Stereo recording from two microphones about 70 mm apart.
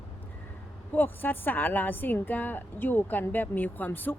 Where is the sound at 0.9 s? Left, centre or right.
Left.